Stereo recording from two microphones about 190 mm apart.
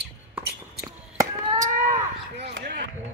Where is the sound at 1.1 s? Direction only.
15° right (ahead or behind).